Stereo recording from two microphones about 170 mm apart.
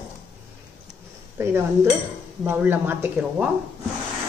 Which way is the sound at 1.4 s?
15° right (ahead or behind).